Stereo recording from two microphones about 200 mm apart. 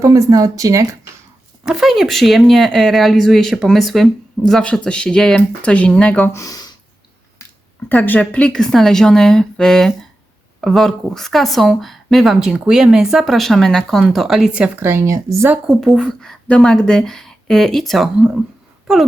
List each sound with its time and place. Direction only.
0.0 s speech: 15° right (ahead or behind)
1.6 s speech: centre (ahead or behind); by 6.7 s 20° left (ahead or behind)
7.9 s speech: 10° left (ahead or behind); by 15.5 s 15° right (ahead or behind)
15.6 s speech: centre (ahead or behind)